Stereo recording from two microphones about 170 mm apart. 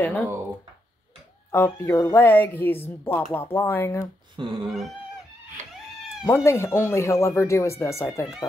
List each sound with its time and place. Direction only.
0.0 s a woman's voice: 10° left (ahead or behind)
1.5 s a woman's voice: 15° left (ahead or behind)
4.4 s cat: 30° right (ahead or behind)
6.2 s a woman's voice: 15° left (ahead or behind)